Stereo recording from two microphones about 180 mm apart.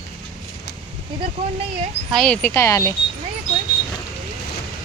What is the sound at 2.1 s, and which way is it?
Speech, 5° left (ahead or behind).